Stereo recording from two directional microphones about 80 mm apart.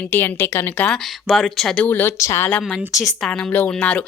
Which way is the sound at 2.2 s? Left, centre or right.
Left.